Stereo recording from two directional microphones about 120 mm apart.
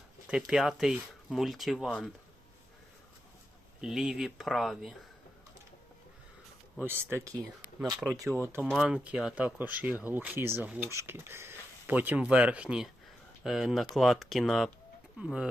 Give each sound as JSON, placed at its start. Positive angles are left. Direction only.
{"t": 0.3, "sound": "speech", "side_deg": -5}
{"t": 3.8, "sound": "speech", "side_deg": -5}
{"t": 6.7, "sound": "speech", "side_deg": -15}
{"t": 8.1, "sound": "speech", "side_deg": 0}
{"t": 8.4, "sound": "speech", "side_deg": -20}
{"t": 8.7, "sound": "speech", "side_deg": -5}